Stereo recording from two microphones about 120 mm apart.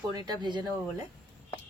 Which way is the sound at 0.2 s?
40° right (ahead or behind).